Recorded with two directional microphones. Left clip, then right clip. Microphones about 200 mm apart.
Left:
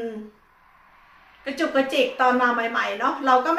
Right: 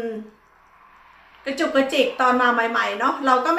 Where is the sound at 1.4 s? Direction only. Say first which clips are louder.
Right 2 dB; 5° right (ahead or behind).